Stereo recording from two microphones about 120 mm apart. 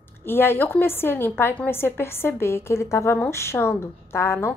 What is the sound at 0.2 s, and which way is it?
A woman's voice, 20° left (ahead or behind).